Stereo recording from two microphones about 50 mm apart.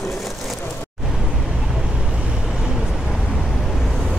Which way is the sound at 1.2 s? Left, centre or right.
Centre.